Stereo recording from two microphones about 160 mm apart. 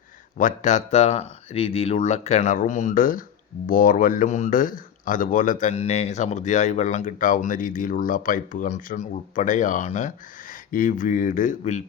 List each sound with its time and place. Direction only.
0.3 s speech: 50° left (ahead or behind)
5.7 s speech: 40° left (ahead or behind)